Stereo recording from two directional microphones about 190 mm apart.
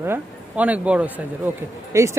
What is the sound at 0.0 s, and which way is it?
Speech, 10° right (ahead or behind).